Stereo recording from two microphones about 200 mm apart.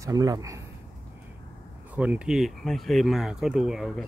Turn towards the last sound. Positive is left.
turn(degrees=0)  # may be behind; listen again after turning